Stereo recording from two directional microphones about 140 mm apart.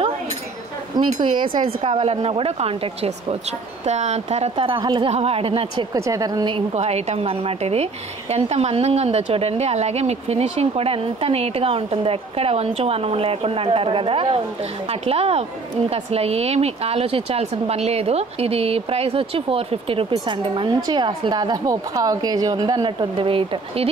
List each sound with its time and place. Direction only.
1.0 s speech: 30° right (ahead or behind)
5.9 s speech: 25° right (ahead or behind)
6.7 s speech: 50° right (ahead or behind)